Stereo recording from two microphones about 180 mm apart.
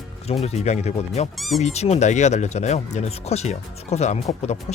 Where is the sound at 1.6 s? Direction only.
35° left (ahead or behind).